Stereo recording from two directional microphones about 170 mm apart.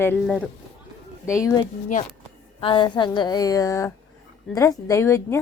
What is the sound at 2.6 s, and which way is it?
A woman's voice, 30° left (ahead or behind).